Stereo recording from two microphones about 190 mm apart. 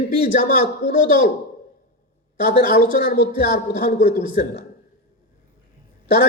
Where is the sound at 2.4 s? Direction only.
50° left (ahead or behind).